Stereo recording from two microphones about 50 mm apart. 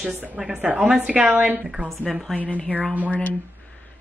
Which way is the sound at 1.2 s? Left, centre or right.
Right.